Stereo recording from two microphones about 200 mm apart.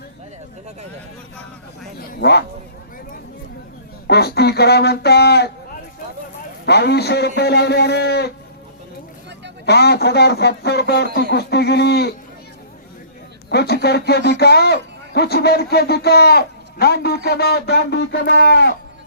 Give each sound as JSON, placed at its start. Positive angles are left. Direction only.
{"t": 2.0, "sound": "speech", "side_deg": 55}
{"t": 4.0, "sound": "speech", "side_deg": 55}
{"t": 6.7, "sound": "speech", "side_deg": 55}
{"t": 9.6, "sound": "speech", "side_deg": 55}
{"t": 13.5, "sound": "a man's voice", "side_deg": 55}